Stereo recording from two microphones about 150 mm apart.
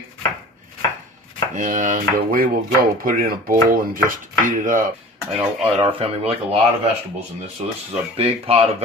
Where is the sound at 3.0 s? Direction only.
65° right (ahead or behind).